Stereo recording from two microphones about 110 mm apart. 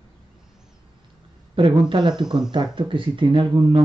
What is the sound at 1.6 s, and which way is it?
Speech, 50° right (ahead or behind).